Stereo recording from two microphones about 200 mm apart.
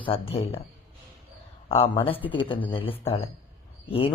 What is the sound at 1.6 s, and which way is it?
Speech, 30° left (ahead or behind).